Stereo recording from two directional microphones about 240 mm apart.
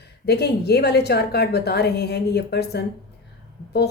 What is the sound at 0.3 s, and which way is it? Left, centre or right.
A woman's voice, left.